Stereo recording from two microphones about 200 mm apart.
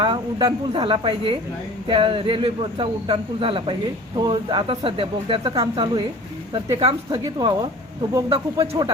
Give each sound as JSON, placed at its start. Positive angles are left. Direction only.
{"t": 0.0, "sound": "speech", "side_deg": -25}